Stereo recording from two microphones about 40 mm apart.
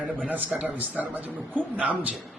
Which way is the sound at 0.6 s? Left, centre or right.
Right.